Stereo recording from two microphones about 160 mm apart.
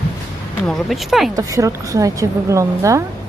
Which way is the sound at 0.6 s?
Centre (ahead or behind).